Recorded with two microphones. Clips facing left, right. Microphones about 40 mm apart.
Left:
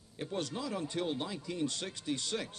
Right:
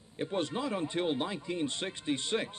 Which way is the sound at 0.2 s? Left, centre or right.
Right.